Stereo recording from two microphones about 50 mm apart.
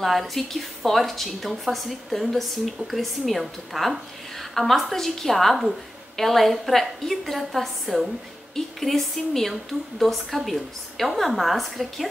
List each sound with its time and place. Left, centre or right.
0.0 s a woman's voice: centre